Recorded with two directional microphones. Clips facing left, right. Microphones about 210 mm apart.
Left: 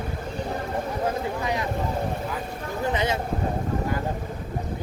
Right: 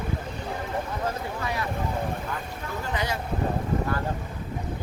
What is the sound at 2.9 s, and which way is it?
Speech, 20° left (ahead or behind).